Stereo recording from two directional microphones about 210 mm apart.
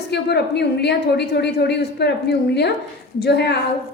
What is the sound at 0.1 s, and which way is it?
A woman's voice, 55° left (ahead or behind).